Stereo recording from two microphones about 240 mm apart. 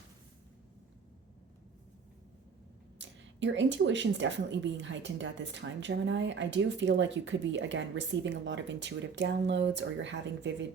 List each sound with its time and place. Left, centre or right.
3.0 s speech: right